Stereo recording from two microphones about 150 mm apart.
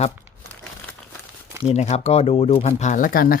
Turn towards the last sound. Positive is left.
turn(degrees=75)  # may be behind; listen again after turning